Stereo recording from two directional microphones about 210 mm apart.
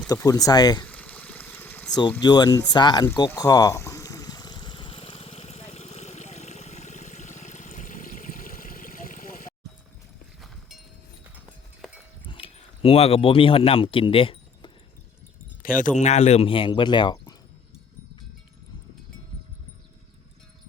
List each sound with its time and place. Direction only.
0.1 s speech: 15° left (ahead or behind)
0.9 s pour: 5° left (ahead or behind)
2.0 s a sound: 20° left (ahead or behind); by 9.5 s 40° left (ahead or behind)
12.3 s speech: 25° left (ahead or behind)
15.6 s speech: 40° left (ahead or behind); by 17.3 s 20° left (ahead or behind)